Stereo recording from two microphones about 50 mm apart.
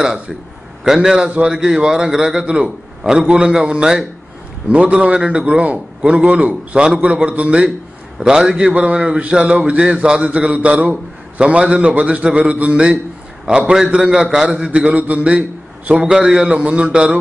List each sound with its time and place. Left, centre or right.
0.8 s a man's voice: centre
8.2 s a man's voice: centre
8.5 s a man's voice: right
14.7 s a man's voice: right